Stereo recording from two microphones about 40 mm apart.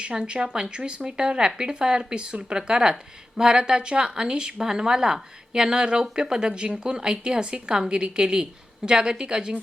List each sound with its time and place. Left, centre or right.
0.0 s speech: right